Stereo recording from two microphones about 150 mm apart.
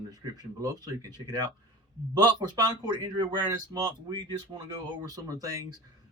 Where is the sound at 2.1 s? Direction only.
25° right (ahead or behind).